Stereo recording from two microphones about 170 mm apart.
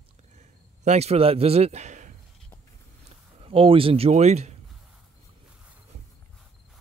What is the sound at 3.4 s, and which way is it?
A man's voice, 35° right (ahead or behind).